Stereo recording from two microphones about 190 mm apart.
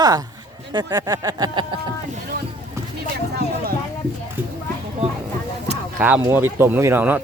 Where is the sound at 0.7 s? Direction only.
20° right (ahead or behind).